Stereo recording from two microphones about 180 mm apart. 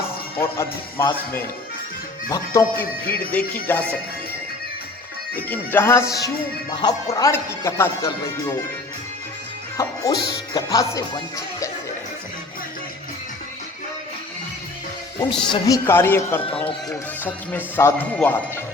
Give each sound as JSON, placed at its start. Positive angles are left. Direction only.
{"t": 0.3, "sound": "speech", "side_deg": 15}
{"t": 2.3, "sound": "speech", "side_deg": 15}
{"t": 5.5, "sound": "speech", "side_deg": 10}
{"t": 9.7, "sound": "speech", "side_deg": 20}
{"t": 15.3, "sound": "speech", "side_deg": 20}